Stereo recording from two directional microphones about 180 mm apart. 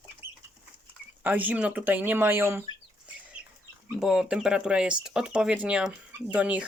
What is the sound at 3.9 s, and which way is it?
Speech, 5° right (ahead or behind).